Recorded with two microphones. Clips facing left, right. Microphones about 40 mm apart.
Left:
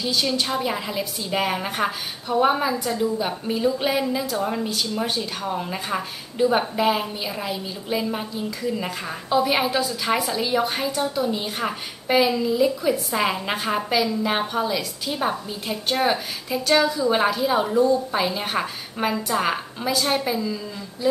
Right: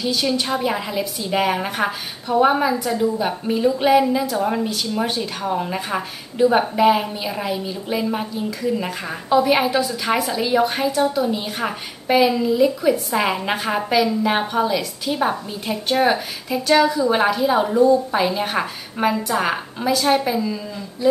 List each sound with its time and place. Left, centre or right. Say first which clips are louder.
0.0 s a woman's voice: right 2 dB; centre
20.3 s a woman's voice: right 3 dB; centre